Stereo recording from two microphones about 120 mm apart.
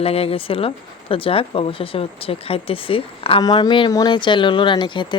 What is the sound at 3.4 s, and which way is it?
Speech, 35° left (ahead or behind).